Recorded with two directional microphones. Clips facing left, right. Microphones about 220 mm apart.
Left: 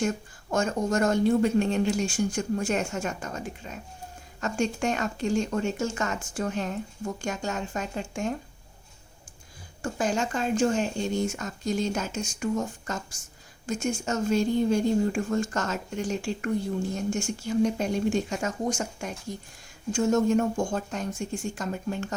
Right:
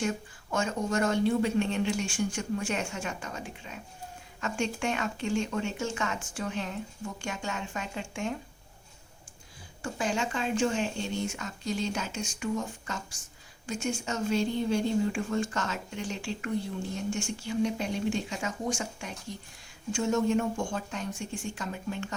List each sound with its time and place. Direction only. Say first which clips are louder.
0.5 s speech: left 4 dB; 45° left (ahead or behind)
9.8 s speech: left 4 dB; 40° left (ahead or behind)